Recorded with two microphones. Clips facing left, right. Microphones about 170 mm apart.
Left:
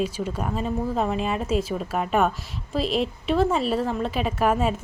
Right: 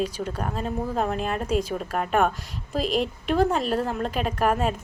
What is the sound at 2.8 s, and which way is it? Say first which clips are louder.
Speech: even; 35° left (ahead or behind).